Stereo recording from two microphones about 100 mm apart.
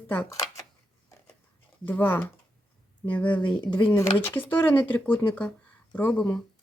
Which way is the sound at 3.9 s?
30° left (ahead or behind).